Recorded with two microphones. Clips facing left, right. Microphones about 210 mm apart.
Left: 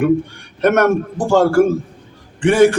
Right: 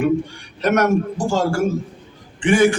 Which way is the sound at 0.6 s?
55° left (ahead or behind).